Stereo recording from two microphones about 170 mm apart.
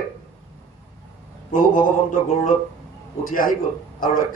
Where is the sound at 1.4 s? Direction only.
50° left (ahead or behind).